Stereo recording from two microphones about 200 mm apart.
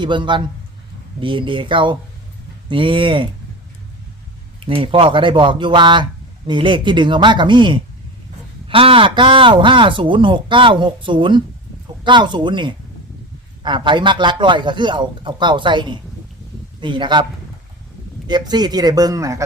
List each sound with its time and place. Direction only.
0.0 s speech: 25° right (ahead or behind)
4.6 s speech: 25° right (ahead or behind)
18.3 s speech: 20° right (ahead or behind)